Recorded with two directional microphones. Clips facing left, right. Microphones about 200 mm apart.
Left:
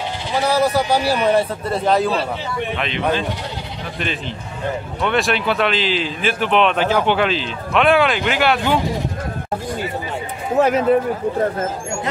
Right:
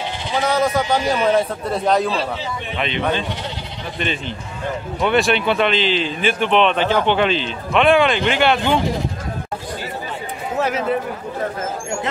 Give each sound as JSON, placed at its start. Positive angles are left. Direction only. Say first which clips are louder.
{"t": 0.4, "sound": "speech", "louder": "left 1 dB", "side_deg": 5}
{"t": 5.0, "sound": "speech", "louder": "right 2 dB", "side_deg": 0}
{"t": 10.6, "sound": "speech", "louder": "left 6 dB", "side_deg": 45}